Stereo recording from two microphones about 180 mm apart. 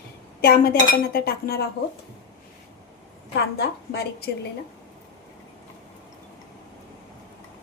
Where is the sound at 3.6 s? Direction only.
65° left (ahead or behind).